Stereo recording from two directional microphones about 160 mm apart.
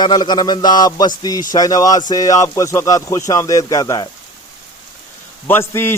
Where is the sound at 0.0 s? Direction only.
25° left (ahead or behind).